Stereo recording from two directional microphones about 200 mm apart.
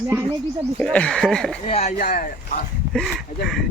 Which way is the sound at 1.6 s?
35° left (ahead or behind).